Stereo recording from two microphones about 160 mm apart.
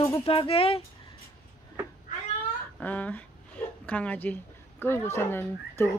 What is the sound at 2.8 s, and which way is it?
Speech, 10° left (ahead or behind).